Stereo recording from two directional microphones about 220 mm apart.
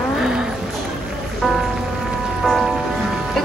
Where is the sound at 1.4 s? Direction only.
Centre (ahead or behind).